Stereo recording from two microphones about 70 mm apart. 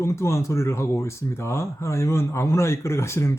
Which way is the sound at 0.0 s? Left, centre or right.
Left.